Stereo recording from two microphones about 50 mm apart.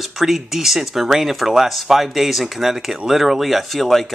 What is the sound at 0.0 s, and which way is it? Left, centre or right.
Speech, centre.